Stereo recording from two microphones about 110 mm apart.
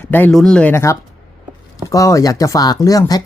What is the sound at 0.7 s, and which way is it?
Speech, 25° left (ahead or behind).